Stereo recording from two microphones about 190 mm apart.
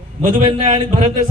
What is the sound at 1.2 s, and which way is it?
Speech, 50° right (ahead or behind).